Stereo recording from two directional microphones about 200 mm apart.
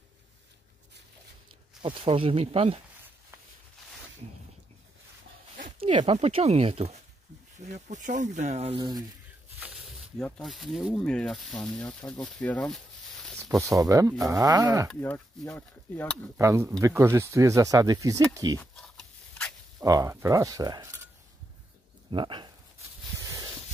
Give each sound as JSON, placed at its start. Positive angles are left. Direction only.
{"t": 1.8, "sound": "speech", "side_deg": -25}
{"t": 5.8, "sound": "speech", "side_deg": -30}
{"t": 10.1, "sound": "speech", "side_deg": 5}
{"t": 13.6, "sound": "speech", "side_deg": -15}
{"t": 14.9, "sound": "speech", "side_deg": 5}
{"t": 16.3, "sound": "speech", "side_deg": -15}
{"t": 18.6, "sound": "a sound", "side_deg": 5}
{"t": 19.8, "sound": "speech", "side_deg": -15}
{"t": 22.1, "sound": "speech", "side_deg": -25}